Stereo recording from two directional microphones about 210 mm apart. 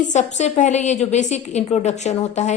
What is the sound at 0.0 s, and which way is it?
A woman's voice, 35° left (ahead or behind).